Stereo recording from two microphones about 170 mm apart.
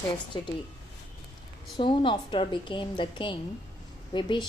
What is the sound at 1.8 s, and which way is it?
A woman's voice, 30° left (ahead or behind).